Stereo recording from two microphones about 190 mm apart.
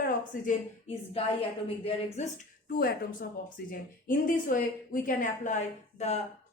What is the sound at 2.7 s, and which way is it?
A woman's voice, 50° left (ahead or behind).